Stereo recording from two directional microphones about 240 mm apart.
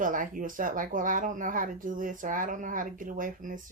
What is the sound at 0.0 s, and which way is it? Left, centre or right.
Speech, right.